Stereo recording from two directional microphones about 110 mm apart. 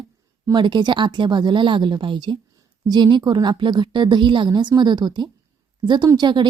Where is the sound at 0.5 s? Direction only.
45° right (ahead or behind).